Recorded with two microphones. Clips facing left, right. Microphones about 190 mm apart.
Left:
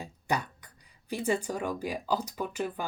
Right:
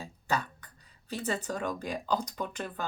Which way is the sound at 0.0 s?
15° left (ahead or behind).